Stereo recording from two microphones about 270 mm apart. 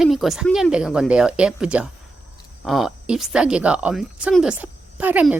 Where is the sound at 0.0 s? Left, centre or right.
Centre.